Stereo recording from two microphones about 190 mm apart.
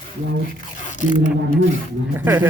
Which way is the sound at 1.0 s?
40° left (ahead or behind).